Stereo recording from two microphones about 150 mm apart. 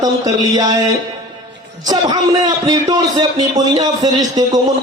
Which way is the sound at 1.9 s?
25° right (ahead or behind).